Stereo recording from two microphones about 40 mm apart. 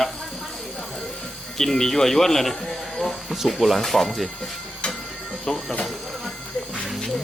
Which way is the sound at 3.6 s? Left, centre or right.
Centre.